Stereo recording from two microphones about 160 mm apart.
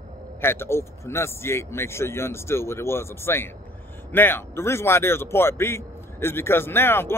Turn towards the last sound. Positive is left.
turn(degrees=15)  # may be behind; listen again after turning